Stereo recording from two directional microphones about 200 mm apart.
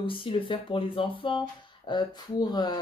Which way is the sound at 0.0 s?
25° left (ahead or behind).